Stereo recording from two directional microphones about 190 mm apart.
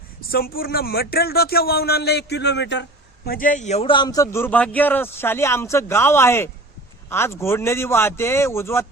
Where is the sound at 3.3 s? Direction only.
45° left (ahead or behind).